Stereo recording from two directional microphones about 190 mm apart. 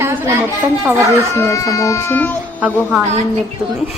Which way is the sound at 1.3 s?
15° left (ahead or behind).